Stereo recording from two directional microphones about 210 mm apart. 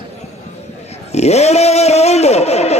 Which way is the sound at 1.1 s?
30° left (ahead or behind).